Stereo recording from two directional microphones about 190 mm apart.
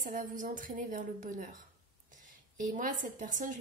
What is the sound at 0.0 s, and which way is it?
A woman's voice, 45° right (ahead or behind).